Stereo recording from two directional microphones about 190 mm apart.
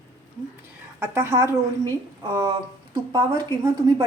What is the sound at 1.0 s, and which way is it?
A woman's voice, 10° right (ahead or behind).